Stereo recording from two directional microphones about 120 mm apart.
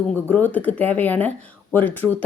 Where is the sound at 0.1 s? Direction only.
15° left (ahead or behind).